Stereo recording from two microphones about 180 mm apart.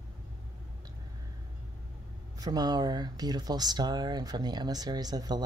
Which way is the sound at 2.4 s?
20° right (ahead or behind).